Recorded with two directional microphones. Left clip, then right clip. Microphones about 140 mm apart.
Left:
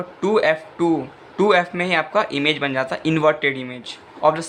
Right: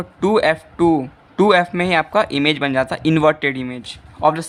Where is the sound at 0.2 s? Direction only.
50° right (ahead or behind).